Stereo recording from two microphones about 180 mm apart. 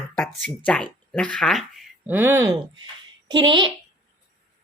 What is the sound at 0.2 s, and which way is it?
Speech, 5° left (ahead or behind).